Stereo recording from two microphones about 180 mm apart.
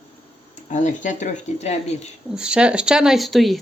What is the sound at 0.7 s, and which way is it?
Speech, 45° left (ahead or behind).